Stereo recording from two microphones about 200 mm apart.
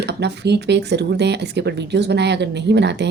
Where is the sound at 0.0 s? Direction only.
55° right (ahead or behind).